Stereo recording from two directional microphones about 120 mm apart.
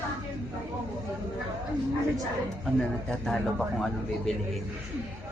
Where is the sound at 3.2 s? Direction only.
Centre (ahead or behind).